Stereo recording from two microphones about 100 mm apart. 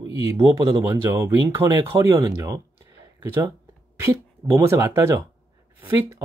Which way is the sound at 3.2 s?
25° right (ahead or behind).